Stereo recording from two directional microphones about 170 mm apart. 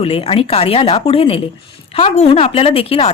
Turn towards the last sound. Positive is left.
turn(degrees=35)  # may be behind; listen again after turning